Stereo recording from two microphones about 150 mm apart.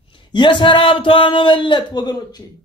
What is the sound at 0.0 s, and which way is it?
A man's voice, 35° left (ahead or behind).